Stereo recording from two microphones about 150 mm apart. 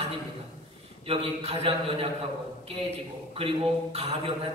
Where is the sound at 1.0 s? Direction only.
40° right (ahead or behind).